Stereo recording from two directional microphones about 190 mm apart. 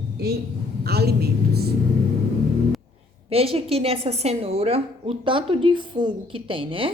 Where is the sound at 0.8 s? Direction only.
60° right (ahead or behind).